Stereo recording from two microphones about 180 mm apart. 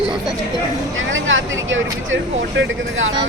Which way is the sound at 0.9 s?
90° right.